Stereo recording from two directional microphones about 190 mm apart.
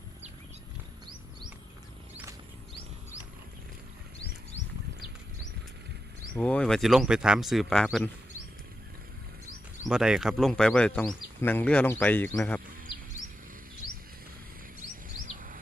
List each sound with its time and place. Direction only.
6.3 s speech: 5° left (ahead or behind)
9.8 s speech: 5° right (ahead or behind)
15.4 s a sound: 45° right (ahead or behind)